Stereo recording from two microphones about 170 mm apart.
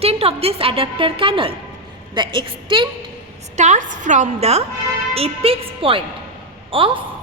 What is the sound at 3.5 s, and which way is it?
A woman's voice, 45° right (ahead or behind).